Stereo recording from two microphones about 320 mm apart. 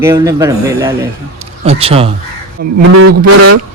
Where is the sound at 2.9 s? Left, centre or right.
Right.